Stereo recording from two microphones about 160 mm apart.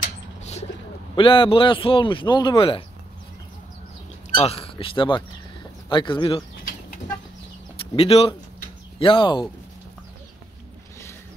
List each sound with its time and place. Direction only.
0.4 s bird: 45° left (ahead or behind)
1.1 s a man's voice: 35° left (ahead or behind)
4.4 s speech: 40° left (ahead or behind)
7.8 s speech: 35° left (ahead or behind)